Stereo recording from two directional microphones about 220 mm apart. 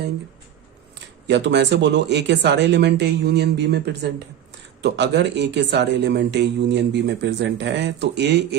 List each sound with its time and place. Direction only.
1.3 s speech: 50° right (ahead or behind)